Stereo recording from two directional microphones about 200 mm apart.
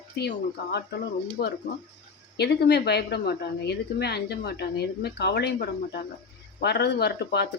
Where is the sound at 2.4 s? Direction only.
55° left (ahead or behind).